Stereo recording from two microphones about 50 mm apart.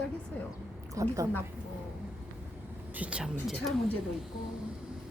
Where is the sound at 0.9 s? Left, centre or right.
Right.